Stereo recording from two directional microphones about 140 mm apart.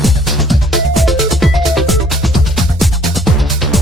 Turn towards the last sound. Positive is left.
turn(degrees=0)  # may be behind; listen again after turning